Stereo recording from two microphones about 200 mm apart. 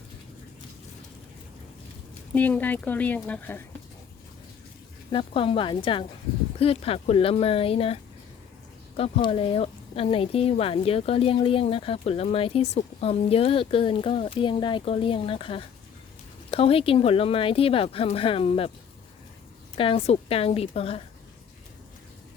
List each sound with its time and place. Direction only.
2.3 s speech: 10° left (ahead or behind)
5.1 s speech: 25° left (ahead or behind)
9.0 s speech: 30° left (ahead or behind)
19.7 s speech: 25° left (ahead or behind)